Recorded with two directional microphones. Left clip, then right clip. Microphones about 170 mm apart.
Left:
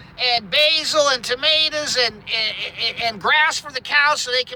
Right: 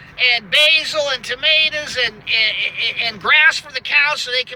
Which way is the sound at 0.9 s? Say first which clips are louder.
Left 2 dB; 45° left (ahead or behind).